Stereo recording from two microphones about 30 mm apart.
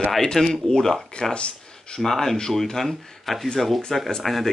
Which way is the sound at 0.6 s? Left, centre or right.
Centre.